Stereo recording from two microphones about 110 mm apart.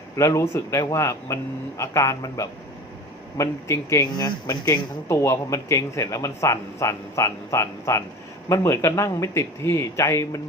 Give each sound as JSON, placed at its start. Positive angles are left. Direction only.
{"t": 0.2, "sound": "speech", "side_deg": 25}